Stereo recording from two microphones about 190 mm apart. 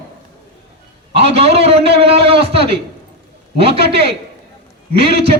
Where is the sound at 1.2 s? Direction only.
30° right (ahead or behind).